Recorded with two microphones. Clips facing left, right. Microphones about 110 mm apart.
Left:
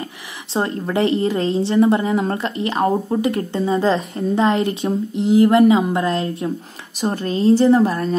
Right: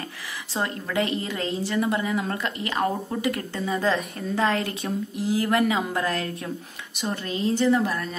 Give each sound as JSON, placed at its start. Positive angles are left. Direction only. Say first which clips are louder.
{"t": 0.5, "sound": "a woman's voice", "louder": "left 8 dB", "side_deg": 30}
{"t": 7.0, "sound": "a woman's voice", "louder": "left 8 dB", "side_deg": 40}